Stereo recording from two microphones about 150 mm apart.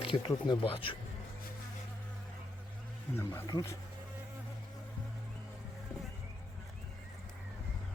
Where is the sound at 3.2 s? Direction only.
20° left (ahead or behind).